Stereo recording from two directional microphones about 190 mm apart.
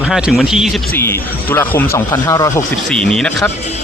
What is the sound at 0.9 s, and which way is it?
Speech, 10° left (ahead or behind).